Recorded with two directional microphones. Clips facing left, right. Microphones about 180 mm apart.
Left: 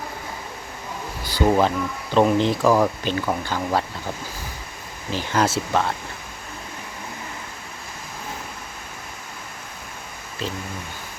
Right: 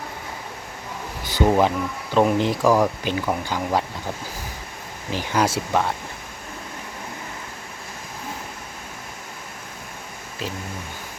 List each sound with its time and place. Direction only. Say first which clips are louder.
1.2 s a sound: right 1 dB; 20° right (ahead or behind)
1.5 s speech: even; 10° right (ahead or behind)
5.1 s speech: even; 15° right (ahead or behind)
10.4 s speech: left 1 dB; 10° right (ahead or behind)